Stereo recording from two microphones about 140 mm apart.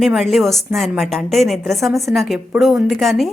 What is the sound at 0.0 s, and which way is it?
A woman's voice, centre (ahead or behind).